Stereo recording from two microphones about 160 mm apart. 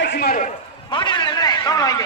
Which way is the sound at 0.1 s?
90° left.